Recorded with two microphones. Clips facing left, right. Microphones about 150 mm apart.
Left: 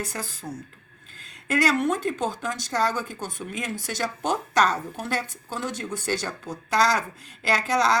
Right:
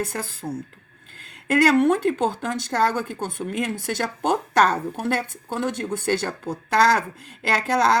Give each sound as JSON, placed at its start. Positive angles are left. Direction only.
{"t": 0.0, "sound": "a woman's voice", "side_deg": -55}